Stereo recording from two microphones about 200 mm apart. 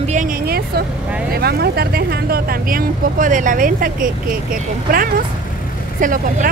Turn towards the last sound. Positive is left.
turn(degrees=-40)  # may be behind; listen again after turning